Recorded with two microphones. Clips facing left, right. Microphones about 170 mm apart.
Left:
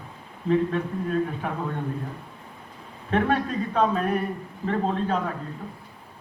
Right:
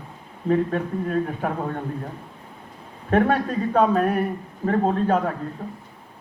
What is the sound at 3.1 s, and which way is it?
A man's voice, 45° right (ahead or behind).